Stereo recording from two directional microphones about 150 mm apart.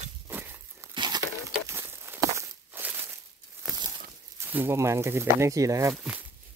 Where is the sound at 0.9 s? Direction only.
30° right (ahead or behind).